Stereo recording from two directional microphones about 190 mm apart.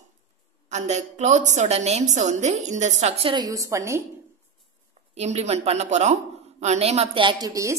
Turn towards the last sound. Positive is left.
turn(degrees=-20)  # may be behind; listen again after turning